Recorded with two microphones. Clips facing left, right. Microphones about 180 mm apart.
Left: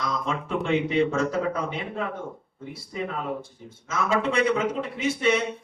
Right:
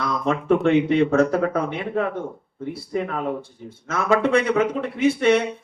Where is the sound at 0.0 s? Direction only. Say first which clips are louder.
Right 5 dB; 60° right (ahead or behind).